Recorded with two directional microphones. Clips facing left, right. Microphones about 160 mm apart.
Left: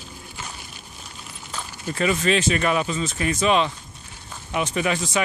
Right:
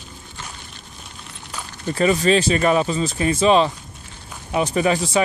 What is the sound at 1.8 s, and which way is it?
Speech, 35° right (ahead or behind).